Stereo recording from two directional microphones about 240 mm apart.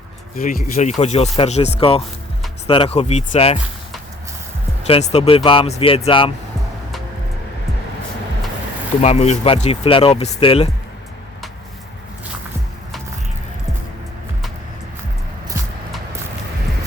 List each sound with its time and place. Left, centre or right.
0.3 s speech: left
4.9 s speech: left
9.0 s speech: left